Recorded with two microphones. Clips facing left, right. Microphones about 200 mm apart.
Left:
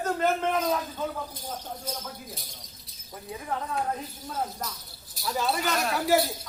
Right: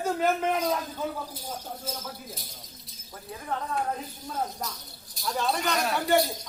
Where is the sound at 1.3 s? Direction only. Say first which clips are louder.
Even; 10° right (ahead or behind).